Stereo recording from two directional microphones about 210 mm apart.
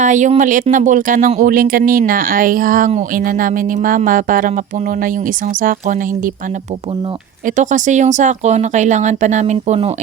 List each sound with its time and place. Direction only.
0.0 s speech: 35° right (ahead or behind)
5.6 s speech: 40° right (ahead or behind)
7.4 s speech: 35° right (ahead or behind)